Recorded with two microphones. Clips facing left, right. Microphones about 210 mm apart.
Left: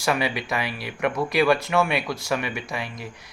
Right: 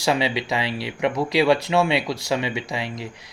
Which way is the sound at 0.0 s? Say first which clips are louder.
Right 2 dB; 25° right (ahead or behind).